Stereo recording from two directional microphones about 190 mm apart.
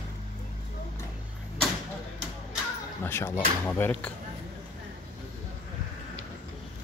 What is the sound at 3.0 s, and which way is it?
Speech, 10° left (ahead or behind).